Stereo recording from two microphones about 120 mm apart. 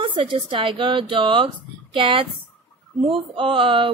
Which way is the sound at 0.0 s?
45° right (ahead or behind).